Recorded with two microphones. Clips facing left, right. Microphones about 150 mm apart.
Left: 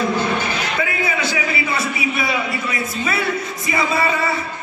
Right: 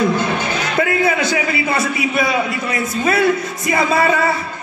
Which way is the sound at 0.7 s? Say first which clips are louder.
Right 9 dB; 45° right (ahead or behind).